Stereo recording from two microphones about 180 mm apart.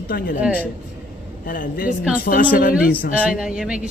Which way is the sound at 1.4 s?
50° left (ahead or behind).